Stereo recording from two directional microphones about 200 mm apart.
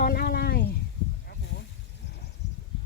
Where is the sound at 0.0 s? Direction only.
50° left (ahead or behind).